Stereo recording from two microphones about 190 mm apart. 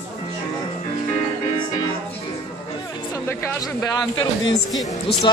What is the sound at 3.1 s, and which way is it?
Speech, 15° left (ahead or behind).